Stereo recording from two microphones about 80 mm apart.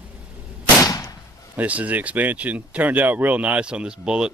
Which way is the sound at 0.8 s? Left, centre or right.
Left.